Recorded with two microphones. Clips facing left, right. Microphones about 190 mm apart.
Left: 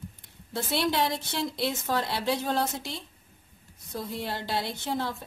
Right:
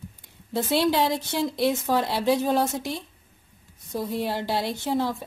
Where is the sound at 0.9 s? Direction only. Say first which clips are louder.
Right 5 dB; 15° right (ahead or behind).